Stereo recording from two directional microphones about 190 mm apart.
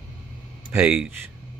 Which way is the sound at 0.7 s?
10° right (ahead or behind).